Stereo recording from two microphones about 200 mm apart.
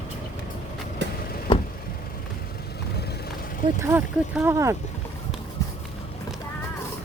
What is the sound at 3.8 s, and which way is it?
Speech, 10° right (ahead or behind).